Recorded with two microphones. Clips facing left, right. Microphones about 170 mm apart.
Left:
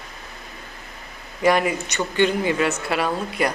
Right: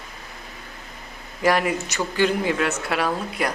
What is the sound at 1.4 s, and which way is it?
A woman's voice, centre (ahead or behind).